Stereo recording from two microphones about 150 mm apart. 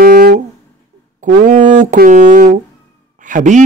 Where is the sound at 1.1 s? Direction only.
55° right (ahead or behind).